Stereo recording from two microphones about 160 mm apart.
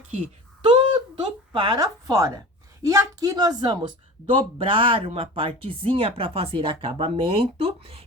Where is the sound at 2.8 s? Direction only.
20° right (ahead or behind).